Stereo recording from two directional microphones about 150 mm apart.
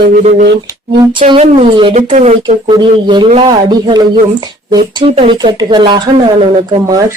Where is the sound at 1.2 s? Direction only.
50° right (ahead or behind).